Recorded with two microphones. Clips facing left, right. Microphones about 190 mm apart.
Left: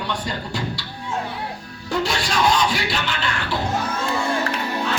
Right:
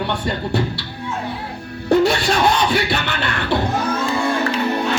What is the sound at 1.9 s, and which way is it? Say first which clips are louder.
Music: right 8 dB; 60° right (ahead or behind).